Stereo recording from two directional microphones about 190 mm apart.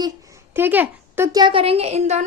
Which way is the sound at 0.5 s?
10° right (ahead or behind).